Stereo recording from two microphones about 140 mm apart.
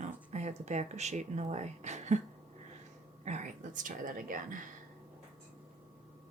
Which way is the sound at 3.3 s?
60° right (ahead or behind).